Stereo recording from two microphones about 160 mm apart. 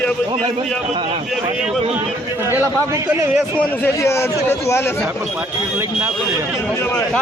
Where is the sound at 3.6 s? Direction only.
10° left (ahead or behind).